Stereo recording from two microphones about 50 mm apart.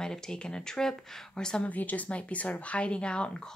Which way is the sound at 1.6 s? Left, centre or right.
Left.